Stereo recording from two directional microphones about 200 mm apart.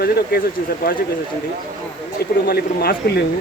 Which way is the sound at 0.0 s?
50° left (ahead or behind).